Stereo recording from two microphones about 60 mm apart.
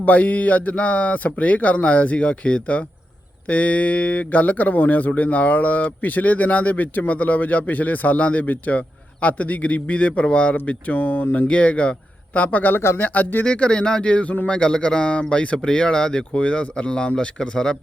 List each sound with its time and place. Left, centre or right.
0.0 s speech: left
13.4 s speech: centre